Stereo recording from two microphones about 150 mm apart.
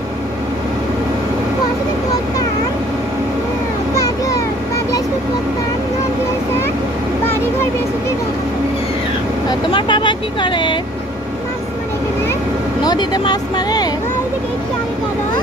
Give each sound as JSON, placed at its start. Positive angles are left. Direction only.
{"t": 3.9, "sound": "a sound", "side_deg": 25}
{"t": 9.5, "sound": "vehicle", "side_deg": 30}
{"t": 12.8, "sound": "speech", "side_deg": 25}